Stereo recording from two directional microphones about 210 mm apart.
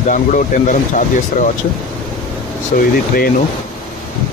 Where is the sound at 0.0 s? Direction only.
35° left (ahead or behind).